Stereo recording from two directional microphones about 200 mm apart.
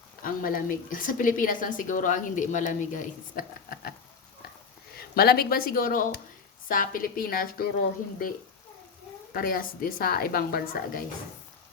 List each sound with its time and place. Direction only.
0.2 s a woman's voice: 45° left (ahead or behind)
4.9 s a woman's voice: 50° left (ahead or behind)
9.3 s a woman's voice: 45° left (ahead or behind)